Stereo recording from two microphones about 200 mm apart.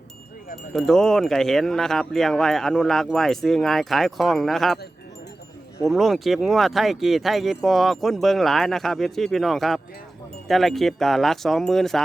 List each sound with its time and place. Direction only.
0.7 s speech: centre (ahead or behind)
5.8 s speech: centre (ahead or behind)